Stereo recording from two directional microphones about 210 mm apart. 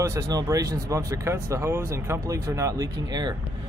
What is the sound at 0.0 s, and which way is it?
Speech, 15° right (ahead or behind).